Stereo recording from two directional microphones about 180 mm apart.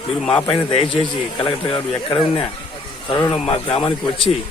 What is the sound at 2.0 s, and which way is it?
Speech, 30° left (ahead or behind).